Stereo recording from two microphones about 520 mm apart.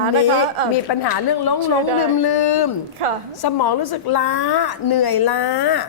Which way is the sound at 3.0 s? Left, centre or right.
Right.